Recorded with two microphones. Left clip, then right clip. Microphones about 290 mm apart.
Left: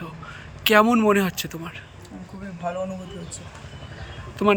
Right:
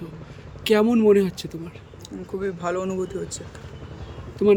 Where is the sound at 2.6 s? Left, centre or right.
Centre.